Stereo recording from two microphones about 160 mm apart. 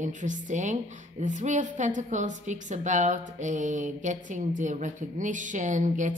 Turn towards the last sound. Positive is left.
turn(degrees=-50)  # may be behind; listen again after turning